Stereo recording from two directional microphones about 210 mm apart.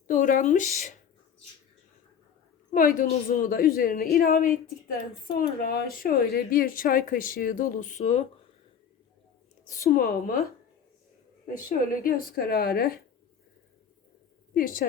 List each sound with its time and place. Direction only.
0.1 s speech: 40° left (ahead or behind)
2.7 s a woman's voice: 40° left (ahead or behind)
9.6 s a woman's voice: 45° left (ahead or behind)
12.0 s a woman's voice: 45° left (ahead or behind)
14.5 s speech: 40° left (ahead or behind)